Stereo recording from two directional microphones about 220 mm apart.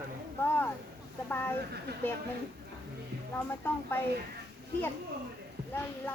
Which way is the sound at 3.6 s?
10° left (ahead or behind).